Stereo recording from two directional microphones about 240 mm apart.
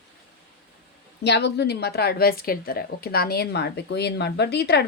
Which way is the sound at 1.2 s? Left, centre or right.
Left.